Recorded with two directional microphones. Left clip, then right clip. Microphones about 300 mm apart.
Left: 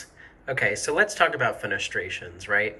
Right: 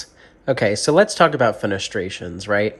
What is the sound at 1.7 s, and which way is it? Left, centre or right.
Speech, centre.